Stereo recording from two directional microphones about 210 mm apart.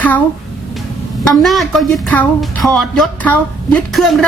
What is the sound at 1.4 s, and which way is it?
Speech, centre (ahead or behind).